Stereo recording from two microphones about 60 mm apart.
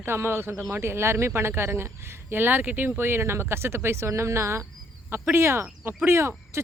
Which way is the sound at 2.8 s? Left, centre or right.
Right.